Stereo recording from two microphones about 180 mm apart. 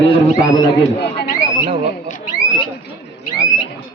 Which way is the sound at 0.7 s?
70° left (ahead or behind).